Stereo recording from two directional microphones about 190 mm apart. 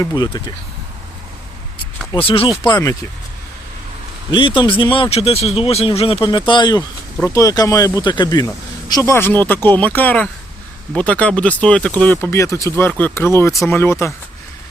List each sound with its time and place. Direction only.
0.0 s speech: 20° left (ahead or behind)
2.1 s speech: 30° left (ahead or behind)
4.3 s speech: 25° left (ahead or behind)